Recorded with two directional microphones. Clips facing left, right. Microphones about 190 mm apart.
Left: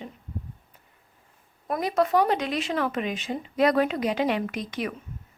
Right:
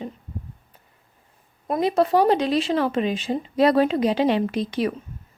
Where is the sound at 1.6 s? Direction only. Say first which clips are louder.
Right 4 dB; 25° right (ahead or behind).